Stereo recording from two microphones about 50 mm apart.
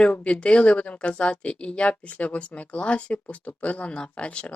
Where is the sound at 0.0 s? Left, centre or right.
Left.